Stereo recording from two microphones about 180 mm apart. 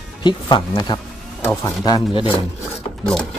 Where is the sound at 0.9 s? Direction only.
25° left (ahead or behind).